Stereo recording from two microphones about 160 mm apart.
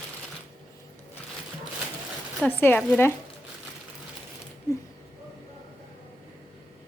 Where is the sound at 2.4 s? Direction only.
10° left (ahead or behind).